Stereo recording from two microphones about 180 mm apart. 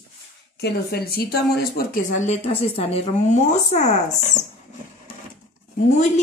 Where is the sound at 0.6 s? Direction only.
60° left (ahead or behind); by 3.9 s 40° left (ahead or behind).